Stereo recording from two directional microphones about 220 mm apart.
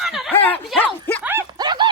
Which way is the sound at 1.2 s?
10° right (ahead or behind).